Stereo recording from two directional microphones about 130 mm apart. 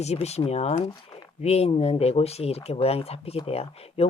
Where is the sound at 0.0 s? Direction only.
55° left (ahead or behind).